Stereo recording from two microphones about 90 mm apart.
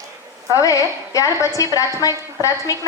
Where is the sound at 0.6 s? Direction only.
40° left (ahead or behind).